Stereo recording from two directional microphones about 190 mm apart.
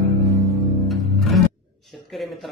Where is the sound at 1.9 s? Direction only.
Centre (ahead or behind).